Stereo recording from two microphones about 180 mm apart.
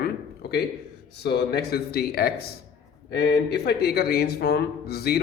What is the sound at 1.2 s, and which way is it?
A man's voice, 65° left (ahead or behind).